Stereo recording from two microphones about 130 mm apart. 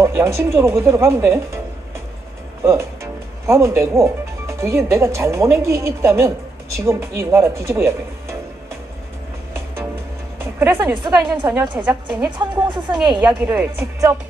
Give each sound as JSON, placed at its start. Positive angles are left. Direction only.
{"t": 0.0, "sound": "speech", "side_deg": -20}
{"t": 2.6, "sound": "speech", "side_deg": -20}
{"t": 10.4, "sound": "speech", "side_deg": -20}
{"t": 11.0, "sound": "a woman's voice", "side_deg": -35}
{"t": 13.3, "sound": "speech", "side_deg": -15}